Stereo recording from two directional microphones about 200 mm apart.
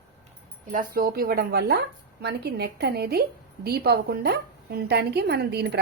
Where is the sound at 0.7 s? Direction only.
45° right (ahead or behind).